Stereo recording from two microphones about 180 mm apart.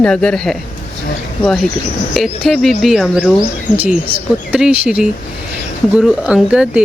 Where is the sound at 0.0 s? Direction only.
5° left (ahead or behind).